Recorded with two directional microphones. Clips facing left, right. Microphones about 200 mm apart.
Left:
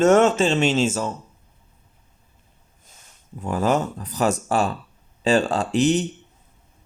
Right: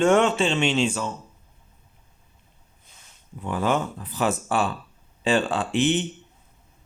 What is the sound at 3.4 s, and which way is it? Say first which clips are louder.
Speech: left 3 dB; 40° left (ahead or behind).